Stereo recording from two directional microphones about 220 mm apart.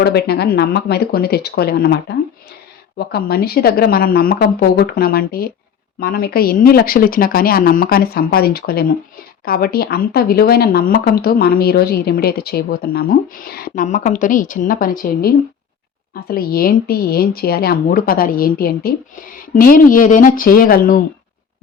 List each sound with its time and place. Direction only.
0.0 s speech: 45° left (ahead or behind)
16.3 s speech: 40° left (ahead or behind)